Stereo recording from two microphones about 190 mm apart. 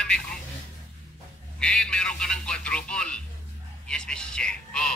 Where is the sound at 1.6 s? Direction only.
5° left (ahead or behind).